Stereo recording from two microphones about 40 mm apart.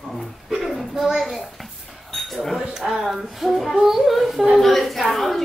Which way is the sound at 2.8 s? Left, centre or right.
Centre.